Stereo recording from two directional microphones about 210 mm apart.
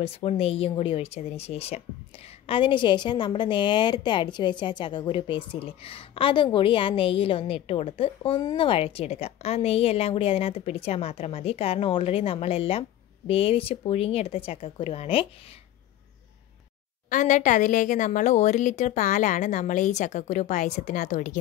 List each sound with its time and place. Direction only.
0.0 s a woman's voice: 30° left (ahead or behind)
17.1 s a woman's voice: 35° left (ahead or behind)